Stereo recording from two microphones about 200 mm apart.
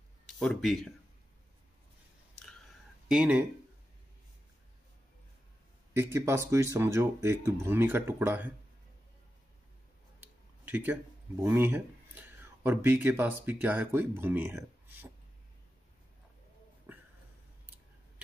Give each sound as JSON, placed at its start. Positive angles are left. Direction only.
{"t": 0.4, "sound": "speech", "side_deg": 0}
{"t": 3.1, "sound": "speech", "side_deg": -5}
{"t": 5.9, "sound": "speech", "side_deg": -10}
{"t": 10.2, "sound": "speech", "side_deg": -10}
{"t": 16.9, "sound": "a sound", "side_deg": -10}